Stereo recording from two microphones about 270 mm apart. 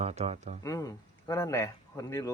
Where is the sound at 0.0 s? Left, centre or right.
Right.